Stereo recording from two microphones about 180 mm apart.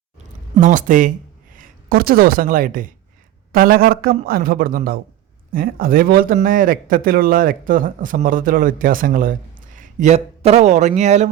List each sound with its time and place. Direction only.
0.5 s speech: 45° right (ahead or behind)